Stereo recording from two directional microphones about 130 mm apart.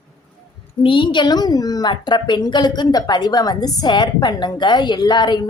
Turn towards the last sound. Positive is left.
turn(degrees=35)  # may be behind; listen again after turning